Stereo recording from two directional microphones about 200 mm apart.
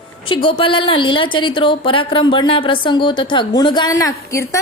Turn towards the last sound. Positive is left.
turn(degrees=15)  # may be behind; listen again after turning